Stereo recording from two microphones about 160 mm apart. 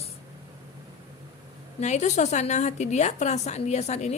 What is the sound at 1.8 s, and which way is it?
A woman's voice, 45° left (ahead or behind).